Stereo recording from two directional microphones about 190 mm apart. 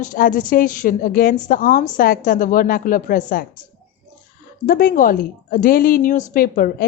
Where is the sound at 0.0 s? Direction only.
45° left (ahead or behind).